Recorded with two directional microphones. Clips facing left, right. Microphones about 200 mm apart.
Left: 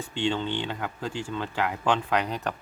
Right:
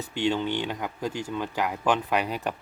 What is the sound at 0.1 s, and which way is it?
Speech, 10° right (ahead or behind).